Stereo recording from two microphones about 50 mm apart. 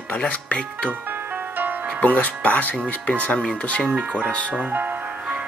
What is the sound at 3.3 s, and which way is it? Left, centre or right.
Speech, centre.